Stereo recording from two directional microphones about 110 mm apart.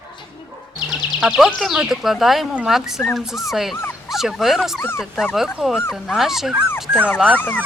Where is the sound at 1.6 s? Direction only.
5° right (ahead or behind).